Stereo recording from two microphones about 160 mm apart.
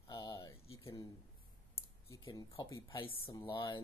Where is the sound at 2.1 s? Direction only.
25° left (ahead or behind).